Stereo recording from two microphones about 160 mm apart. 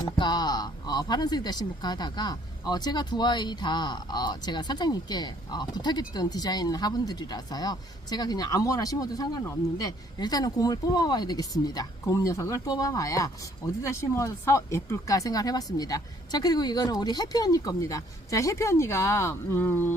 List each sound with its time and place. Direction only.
0.2 s speech: 25° left (ahead or behind)